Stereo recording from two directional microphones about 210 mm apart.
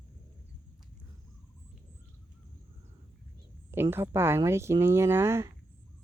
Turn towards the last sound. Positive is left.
turn(degrees=-10)  # may be behind; listen again after turning